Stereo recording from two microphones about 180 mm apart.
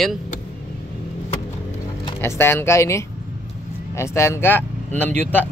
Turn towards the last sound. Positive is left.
turn(degrees=10)  # may be behind; listen again after turning